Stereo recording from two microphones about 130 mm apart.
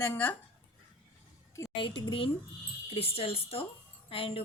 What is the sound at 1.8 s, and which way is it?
A woman's voice, 40° left (ahead or behind).